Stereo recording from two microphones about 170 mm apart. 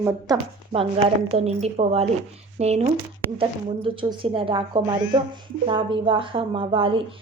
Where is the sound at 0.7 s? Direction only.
35° right (ahead or behind).